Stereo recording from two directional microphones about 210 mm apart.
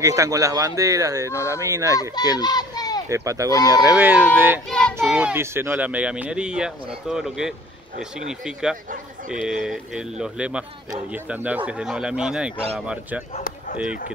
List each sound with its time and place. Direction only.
0.0 s speech: 15° right (ahead or behind)
1.3 s speech: 15° left (ahead or behind)
1.6 s speech: 15° right (ahead or behind)
2.0 s speech: 20° left (ahead or behind)
3.1 s speech: 15° right (ahead or behind)
3.5 s speech: 15° left (ahead or behind)
3.9 s speech: 5° right (ahead or behind)
4.6 s child singing: 5° left (ahead or behind)
5.0 s speech: 5° right (ahead or behind)